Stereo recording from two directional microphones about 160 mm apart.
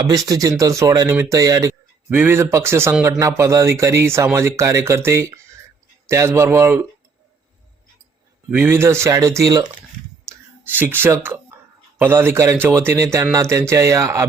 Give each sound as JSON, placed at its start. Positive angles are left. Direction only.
{"t": 0.1, "sound": "speech", "side_deg": -20}
{"t": 8.4, "sound": "speech", "side_deg": -15}
{"t": 10.2, "sound": "clicking", "side_deg": -15}
{"t": 11.9, "sound": "speech", "side_deg": -15}